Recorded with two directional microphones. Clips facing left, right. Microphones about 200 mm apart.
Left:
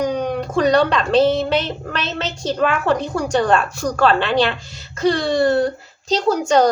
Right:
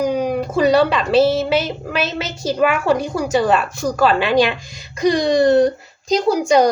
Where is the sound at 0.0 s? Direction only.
5° right (ahead or behind).